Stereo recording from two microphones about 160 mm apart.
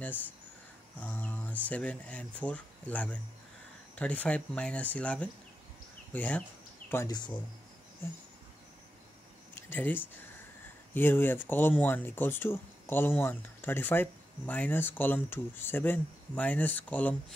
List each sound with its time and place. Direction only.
0.9 s speech: 10° left (ahead or behind)
6.9 s speech: 20° left (ahead or behind)
9.6 s speech: 10° left (ahead or behind)